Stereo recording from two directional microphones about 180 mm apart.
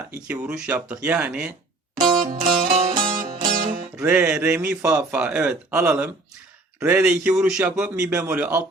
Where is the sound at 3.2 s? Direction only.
50° right (ahead or behind).